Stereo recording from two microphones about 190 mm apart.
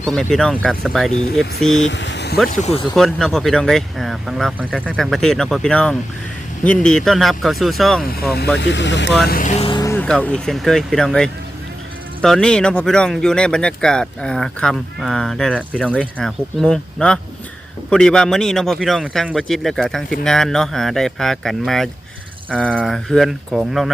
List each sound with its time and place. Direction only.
0.0 s speech: 5° left (ahead or behind)
1.9 s vehicle: 70° left (ahead or behind)
2.6 s speech: 35° left (ahead or behind)
2.9 s speech: centre (ahead or behind)
8.5 s speech: 70° left (ahead or behind)
9.2 s speech: 45° left (ahead or behind); by 9.9 s 25° left (ahead or behind)
9.9 s speech: 5° left (ahead or behind)
22.4 s a sound: 5° left (ahead or behind)
22.8 s speech: centre (ahead or behind)